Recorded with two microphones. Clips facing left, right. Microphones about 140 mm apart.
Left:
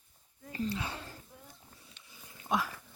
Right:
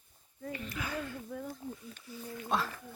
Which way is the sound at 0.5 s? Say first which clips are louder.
Left 3 dB; 30° left (ahead or behind).